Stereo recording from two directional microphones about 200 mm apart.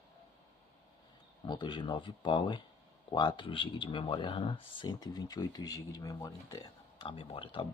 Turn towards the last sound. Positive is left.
turn(degrees=25)  # may be behind; listen again after turning